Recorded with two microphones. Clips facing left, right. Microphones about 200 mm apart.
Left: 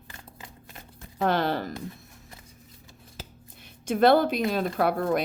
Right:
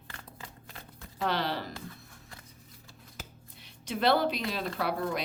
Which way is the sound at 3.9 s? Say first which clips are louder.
Left 7 dB; 50° left (ahead or behind).